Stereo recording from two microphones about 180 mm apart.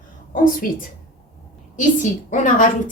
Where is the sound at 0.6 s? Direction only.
50° left (ahead or behind).